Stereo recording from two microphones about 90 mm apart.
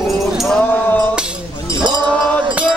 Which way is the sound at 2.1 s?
5° left (ahead or behind).